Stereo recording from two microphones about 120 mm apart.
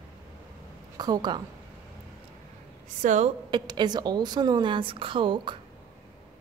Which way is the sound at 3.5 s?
35° right (ahead or behind).